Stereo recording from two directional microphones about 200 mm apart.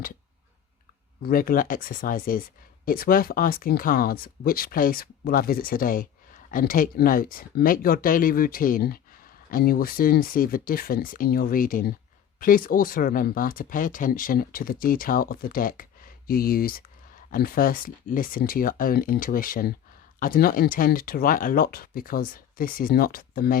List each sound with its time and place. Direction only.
1.2 s speech: 45° left (ahead or behind)